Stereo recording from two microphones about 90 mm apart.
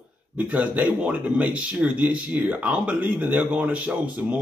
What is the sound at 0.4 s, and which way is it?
Speech, 15° right (ahead or behind).